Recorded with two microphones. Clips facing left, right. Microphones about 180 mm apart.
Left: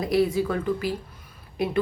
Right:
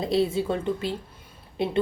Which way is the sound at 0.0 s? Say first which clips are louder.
Left 1 dB; 25° right (ahead or behind).